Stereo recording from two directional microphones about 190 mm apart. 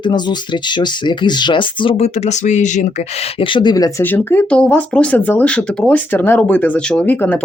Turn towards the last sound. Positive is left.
turn(degrees=10)  # may be behind; listen again after turning